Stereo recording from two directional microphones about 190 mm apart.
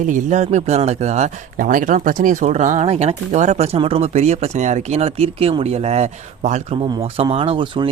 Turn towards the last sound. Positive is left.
turn(degrees=-25)  # may be behind; listen again after turning